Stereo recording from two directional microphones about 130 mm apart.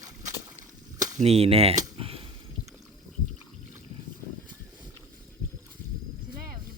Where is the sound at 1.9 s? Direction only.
45° right (ahead or behind).